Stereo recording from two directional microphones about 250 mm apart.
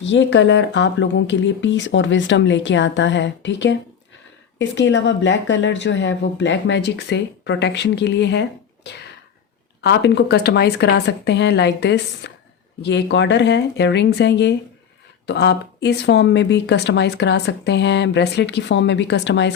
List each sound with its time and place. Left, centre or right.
0.0 s speech: left